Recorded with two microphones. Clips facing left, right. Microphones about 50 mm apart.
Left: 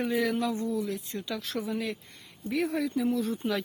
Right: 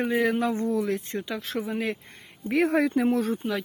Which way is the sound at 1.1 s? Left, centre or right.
Right.